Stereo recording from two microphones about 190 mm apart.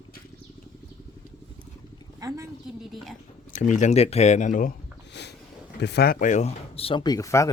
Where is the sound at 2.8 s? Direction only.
Centre (ahead or behind).